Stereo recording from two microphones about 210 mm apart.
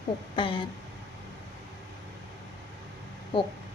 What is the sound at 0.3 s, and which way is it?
Speech, 25° left (ahead or behind).